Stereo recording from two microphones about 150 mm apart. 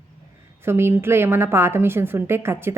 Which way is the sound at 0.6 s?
15° right (ahead or behind).